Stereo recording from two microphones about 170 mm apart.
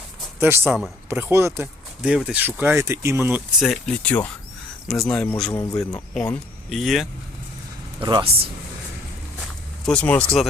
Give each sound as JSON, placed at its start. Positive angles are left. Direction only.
{"t": 0.3, "sound": "speech", "side_deg": -15}
{"t": 1.3, "sound": "speech", "side_deg": -15}
{"t": 2.0, "sound": "speech", "side_deg": 0}
{"t": 7.9, "sound": "speech", "side_deg": -30}
{"t": 9.8, "sound": "speech", "side_deg": 10}